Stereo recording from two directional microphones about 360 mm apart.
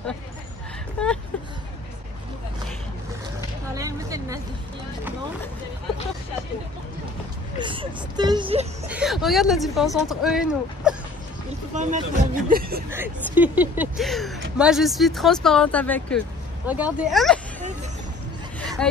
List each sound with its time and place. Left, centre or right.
3.7 s a sound: centre
7.5 s a sound: centre
8.8 s speech: centre
11.7 s speech: centre
12.9 s speech: centre
18.8 s speech: centre